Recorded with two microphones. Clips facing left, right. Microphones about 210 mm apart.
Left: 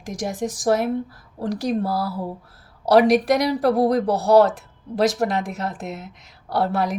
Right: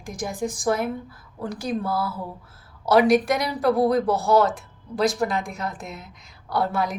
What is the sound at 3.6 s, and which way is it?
Speech, 35° left (ahead or behind).